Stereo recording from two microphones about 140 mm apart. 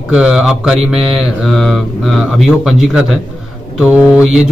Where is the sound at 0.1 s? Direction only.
10° right (ahead or behind).